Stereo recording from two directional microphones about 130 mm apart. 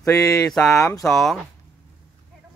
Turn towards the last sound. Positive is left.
turn(degrees=0)  # may be behind; listen again after turning